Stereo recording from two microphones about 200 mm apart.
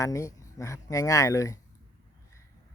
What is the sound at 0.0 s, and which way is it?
Speech, 15° left (ahead or behind).